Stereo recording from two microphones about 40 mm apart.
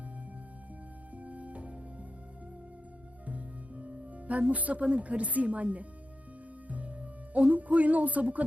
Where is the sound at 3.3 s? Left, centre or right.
Right.